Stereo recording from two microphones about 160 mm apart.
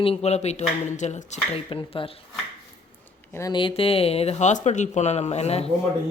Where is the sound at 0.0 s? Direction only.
40° left (ahead or behind).